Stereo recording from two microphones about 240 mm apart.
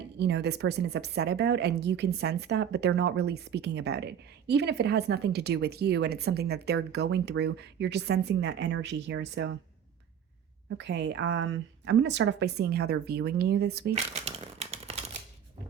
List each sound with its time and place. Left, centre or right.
0.2 s speech: right
10.7 s speech: right
13.9 s shuffling cards: right